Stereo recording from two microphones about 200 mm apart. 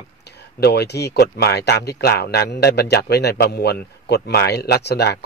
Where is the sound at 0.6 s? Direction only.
55° left (ahead or behind).